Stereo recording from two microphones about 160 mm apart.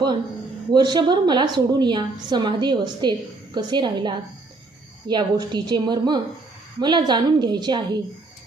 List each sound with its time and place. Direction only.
0.7 s a woman's voice: 25° right (ahead or behind)